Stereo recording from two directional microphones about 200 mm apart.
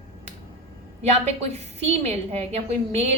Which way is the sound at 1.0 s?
30° right (ahead or behind).